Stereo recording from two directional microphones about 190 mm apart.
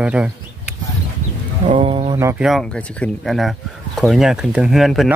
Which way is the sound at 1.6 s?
25° right (ahead or behind).